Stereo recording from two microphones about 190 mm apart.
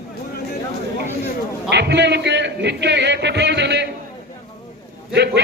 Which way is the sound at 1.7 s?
65° right (ahead or behind).